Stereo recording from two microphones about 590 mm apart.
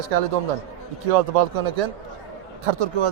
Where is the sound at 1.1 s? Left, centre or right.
Right.